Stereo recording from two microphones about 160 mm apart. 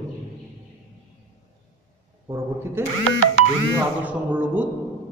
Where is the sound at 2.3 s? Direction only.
20° right (ahead or behind).